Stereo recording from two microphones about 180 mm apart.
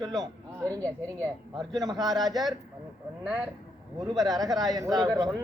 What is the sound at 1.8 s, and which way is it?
Speech, 20° right (ahead or behind).